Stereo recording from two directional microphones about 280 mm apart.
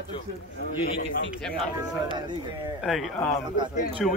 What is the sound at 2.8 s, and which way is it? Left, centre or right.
Speech, centre.